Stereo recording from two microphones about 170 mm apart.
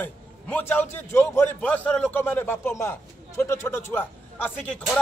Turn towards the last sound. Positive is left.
turn(degrees=5)  # may be behind; listen again after turning